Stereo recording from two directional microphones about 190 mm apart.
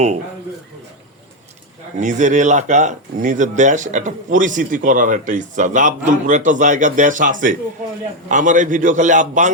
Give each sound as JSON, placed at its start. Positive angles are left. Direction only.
{"t": 2.0, "sound": "speech", "side_deg": -40}